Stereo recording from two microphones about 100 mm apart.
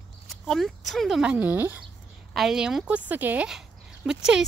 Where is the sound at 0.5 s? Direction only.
Centre (ahead or behind).